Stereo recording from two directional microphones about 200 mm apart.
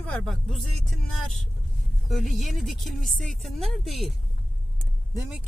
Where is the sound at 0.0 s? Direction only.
5° left (ahead or behind).